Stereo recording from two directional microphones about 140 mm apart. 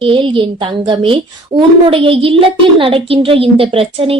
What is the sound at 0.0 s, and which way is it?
A woman's voice, 40° right (ahead or behind).